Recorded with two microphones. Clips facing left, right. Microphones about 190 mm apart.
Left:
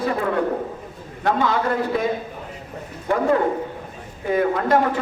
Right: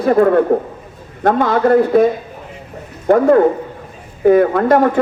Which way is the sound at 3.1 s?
50° right (ahead or behind).